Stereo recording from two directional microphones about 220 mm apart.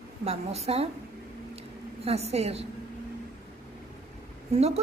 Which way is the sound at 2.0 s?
30° right (ahead or behind).